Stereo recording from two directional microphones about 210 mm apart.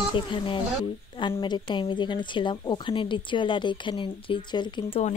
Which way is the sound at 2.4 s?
25° left (ahead or behind).